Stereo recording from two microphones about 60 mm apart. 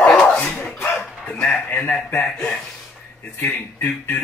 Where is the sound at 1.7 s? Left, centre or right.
Left.